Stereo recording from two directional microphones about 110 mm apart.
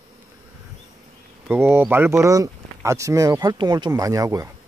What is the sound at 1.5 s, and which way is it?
Speech, 20° right (ahead or behind).